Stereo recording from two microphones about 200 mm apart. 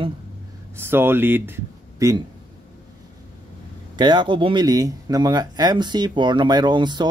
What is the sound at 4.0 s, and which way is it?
Speech, 20° right (ahead or behind).